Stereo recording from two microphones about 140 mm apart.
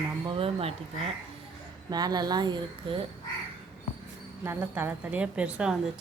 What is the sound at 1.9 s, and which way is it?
Speech, 30° right (ahead or behind).